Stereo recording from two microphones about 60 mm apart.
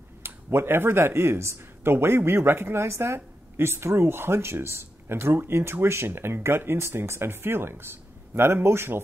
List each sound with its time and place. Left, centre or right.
0.2 s speech: right